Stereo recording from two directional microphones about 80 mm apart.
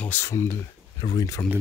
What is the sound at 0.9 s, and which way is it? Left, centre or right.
Speech, left.